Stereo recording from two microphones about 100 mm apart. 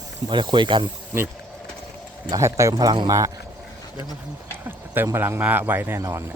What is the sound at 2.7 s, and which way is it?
Speech, 45° right (ahead or behind).